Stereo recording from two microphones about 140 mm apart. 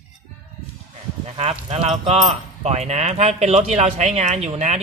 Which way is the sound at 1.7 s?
50° right (ahead or behind).